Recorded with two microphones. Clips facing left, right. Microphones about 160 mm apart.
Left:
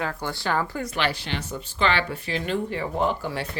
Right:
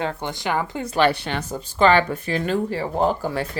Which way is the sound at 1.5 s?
45° right (ahead or behind).